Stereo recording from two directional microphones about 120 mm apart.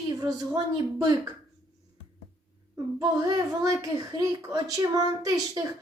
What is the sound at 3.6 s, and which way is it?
A woman's voice, 30° right (ahead or behind).